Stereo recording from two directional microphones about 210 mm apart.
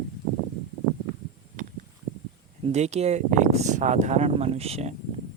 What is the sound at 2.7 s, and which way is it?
Speech, 30° right (ahead or behind).